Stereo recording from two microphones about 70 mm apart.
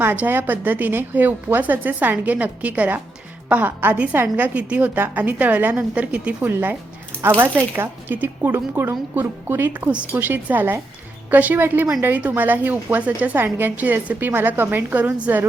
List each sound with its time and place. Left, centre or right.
0.0 s a woman's voice: right